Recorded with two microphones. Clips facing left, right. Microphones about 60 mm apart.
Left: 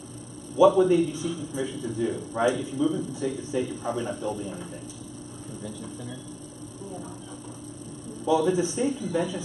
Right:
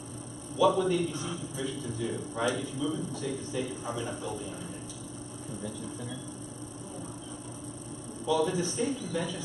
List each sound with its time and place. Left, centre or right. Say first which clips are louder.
0.6 s a man's voice: left 7 dB; centre
2.5 s a man's voice: left 6 dB; centre
8.3 s a man's voice: left 5 dB; centre